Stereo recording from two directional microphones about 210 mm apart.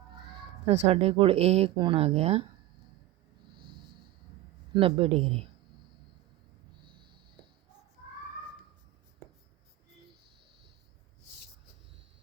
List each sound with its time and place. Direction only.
0.7 s speech: 30° right (ahead or behind)
4.7 s speech: 25° right (ahead or behind)